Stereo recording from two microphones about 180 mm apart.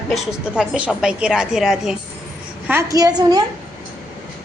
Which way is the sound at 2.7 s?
15° right (ahead or behind).